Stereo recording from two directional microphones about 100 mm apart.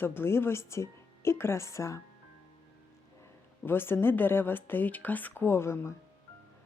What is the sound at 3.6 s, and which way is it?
Speech, 20° left (ahead or behind).